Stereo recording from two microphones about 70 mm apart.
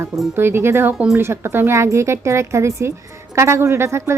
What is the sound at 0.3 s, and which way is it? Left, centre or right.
Speech, right.